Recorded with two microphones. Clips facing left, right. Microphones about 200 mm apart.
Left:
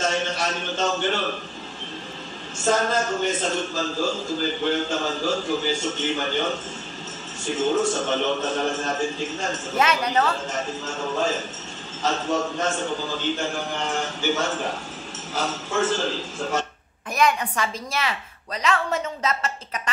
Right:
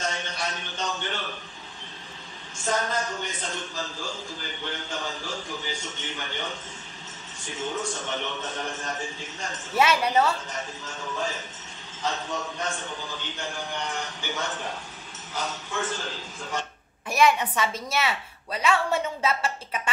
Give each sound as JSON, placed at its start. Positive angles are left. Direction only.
{"t": 0.0, "sound": "a man's voice", "side_deg": 90}
{"t": 2.6, "sound": "a man's voice", "side_deg": 90}
{"t": 9.8, "sound": "a woman's voice", "side_deg": -10}
{"t": 11.1, "sound": "a man's voice", "side_deg": 90}
{"t": 15.8, "sound": "a man's voice", "side_deg": 90}
{"t": 17.1, "sound": "a woman's voice", "side_deg": -5}